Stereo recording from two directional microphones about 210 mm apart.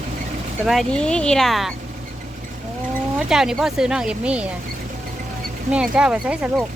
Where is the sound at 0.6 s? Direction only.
Centre (ahead or behind).